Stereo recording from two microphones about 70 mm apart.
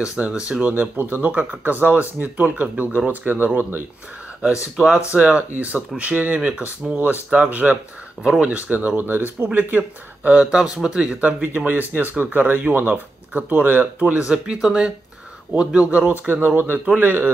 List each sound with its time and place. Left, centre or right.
0.3 s speech: centre
4.7 s speech: centre
8.2 s speech: centre
8.5 s speech: right
10.4 s speech: centre
16.3 s speech: right